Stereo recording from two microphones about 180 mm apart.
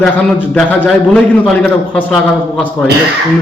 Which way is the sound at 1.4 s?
5° left (ahead or behind).